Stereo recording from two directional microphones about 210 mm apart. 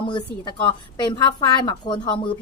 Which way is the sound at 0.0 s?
20° left (ahead or behind).